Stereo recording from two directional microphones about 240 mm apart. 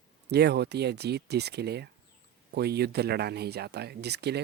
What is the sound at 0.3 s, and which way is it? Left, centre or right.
Speech, right.